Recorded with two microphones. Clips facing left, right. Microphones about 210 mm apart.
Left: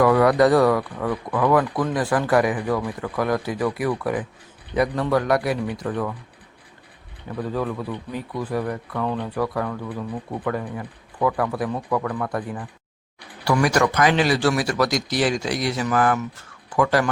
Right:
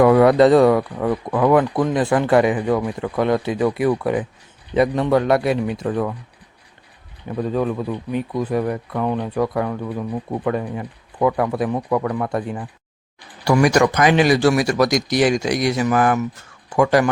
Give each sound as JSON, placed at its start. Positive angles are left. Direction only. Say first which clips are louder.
{"t": 0.0, "sound": "speech", "louder": "right 4 dB", "side_deg": -25}
{"t": 7.3, "sound": "speech", "louder": "right 5 dB", "side_deg": -20}